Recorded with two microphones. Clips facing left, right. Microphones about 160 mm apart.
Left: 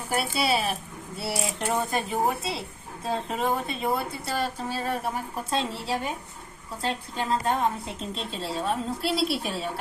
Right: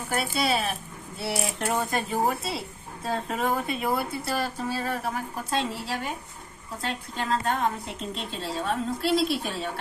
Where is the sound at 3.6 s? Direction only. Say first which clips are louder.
Right 1 dB; 25° left (ahead or behind).